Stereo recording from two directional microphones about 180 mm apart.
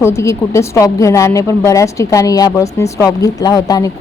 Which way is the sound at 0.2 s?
15° left (ahead or behind).